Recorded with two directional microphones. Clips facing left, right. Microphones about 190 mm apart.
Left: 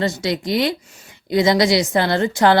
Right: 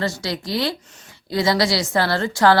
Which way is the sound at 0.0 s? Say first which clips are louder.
Left 4 dB; 20° left (ahead or behind).